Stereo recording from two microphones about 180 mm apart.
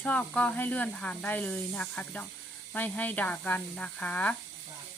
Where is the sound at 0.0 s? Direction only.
5° left (ahead or behind).